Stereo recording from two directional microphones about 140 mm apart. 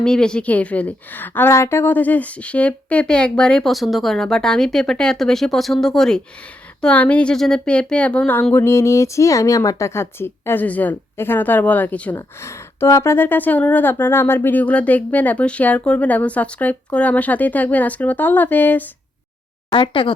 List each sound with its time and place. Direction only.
0.0 s a woman's voice: 5° left (ahead or behind)
19.7 s speech: 35° left (ahead or behind)